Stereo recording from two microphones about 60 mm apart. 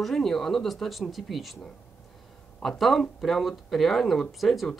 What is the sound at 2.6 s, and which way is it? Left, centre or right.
Speech, centre.